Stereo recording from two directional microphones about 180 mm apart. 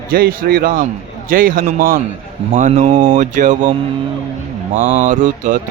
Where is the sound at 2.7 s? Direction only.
35° right (ahead or behind).